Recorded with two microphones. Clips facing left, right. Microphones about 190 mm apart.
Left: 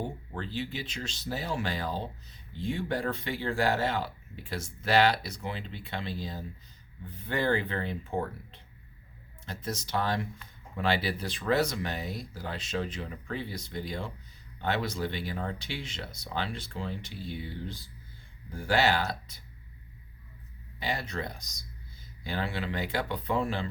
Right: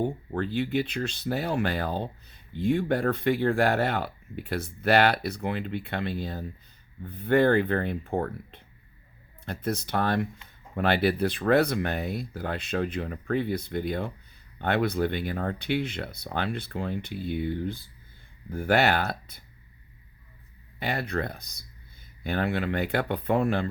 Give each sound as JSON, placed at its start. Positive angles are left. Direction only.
{"t": 0.0, "sound": "speech", "side_deg": -55}
{"t": 20.7, "sound": "speech", "side_deg": -60}